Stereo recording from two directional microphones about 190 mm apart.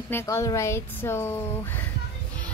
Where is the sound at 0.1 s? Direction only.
15° left (ahead or behind).